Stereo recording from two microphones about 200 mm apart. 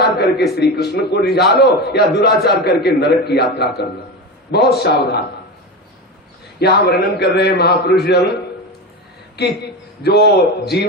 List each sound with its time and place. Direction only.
0.2 s a man's voice: 55° left (ahead or behind)
6.6 s a man's voice: 55° left (ahead or behind)
9.3 s a man's voice: 55° left (ahead or behind)